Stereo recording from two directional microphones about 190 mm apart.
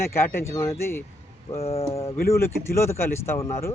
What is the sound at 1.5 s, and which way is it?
Speech, 30° left (ahead or behind).